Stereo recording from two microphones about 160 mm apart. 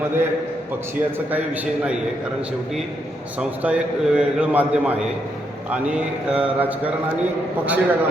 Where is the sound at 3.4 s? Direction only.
10° right (ahead or behind).